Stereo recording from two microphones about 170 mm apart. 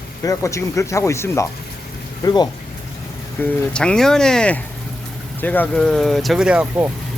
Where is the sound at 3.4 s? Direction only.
5° left (ahead or behind); by 6.9 s 10° right (ahead or behind).